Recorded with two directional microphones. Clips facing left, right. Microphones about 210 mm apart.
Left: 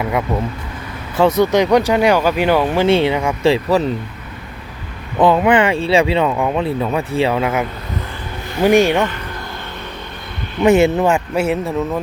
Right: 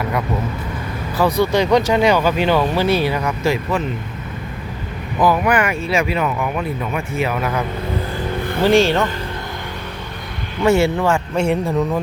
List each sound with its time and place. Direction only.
1.1 s speech: 25° left (ahead or behind)
2.8 s speech: 25° left (ahead or behind)
5.2 s speech: 25° left (ahead or behind)
8.6 s speech: 15° left (ahead or behind)
10.6 s speech: 20° left (ahead or behind)
11.3 s a man's voice: 5° left (ahead or behind)